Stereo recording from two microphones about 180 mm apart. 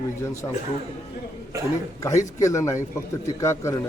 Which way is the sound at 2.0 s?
15° left (ahead or behind).